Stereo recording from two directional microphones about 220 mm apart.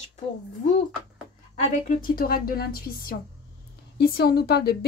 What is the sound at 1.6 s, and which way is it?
A woman's voice, 35° left (ahead or behind).